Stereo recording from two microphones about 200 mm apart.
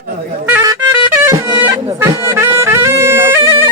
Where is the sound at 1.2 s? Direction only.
10° right (ahead or behind).